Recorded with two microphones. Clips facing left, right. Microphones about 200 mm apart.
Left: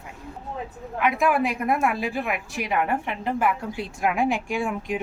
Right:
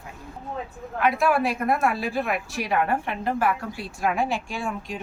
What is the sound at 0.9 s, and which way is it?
A woman's voice, 15° left (ahead or behind).